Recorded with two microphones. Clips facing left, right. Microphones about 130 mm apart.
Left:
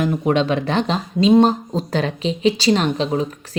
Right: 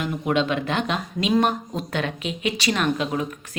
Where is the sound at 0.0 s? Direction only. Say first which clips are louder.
Left 5 dB; 35° left (ahead or behind).